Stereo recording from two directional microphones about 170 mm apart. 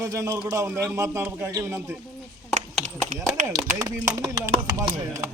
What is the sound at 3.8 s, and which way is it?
Speech, 20° right (ahead or behind).